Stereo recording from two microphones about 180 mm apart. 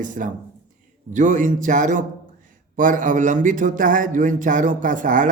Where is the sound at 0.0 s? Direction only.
45° right (ahead or behind).